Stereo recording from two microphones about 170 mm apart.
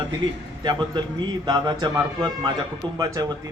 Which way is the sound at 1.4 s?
25° right (ahead or behind).